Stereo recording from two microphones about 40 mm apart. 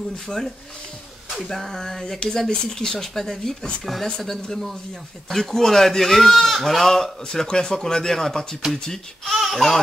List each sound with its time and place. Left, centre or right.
1.3 s speech: centre
8.9 s speech: centre